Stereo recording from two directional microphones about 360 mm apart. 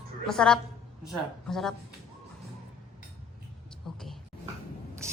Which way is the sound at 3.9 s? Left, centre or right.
Centre.